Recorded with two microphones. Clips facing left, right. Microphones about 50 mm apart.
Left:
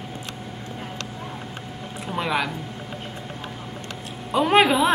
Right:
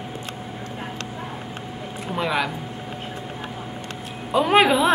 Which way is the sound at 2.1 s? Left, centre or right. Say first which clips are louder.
Right 1 dB; centre.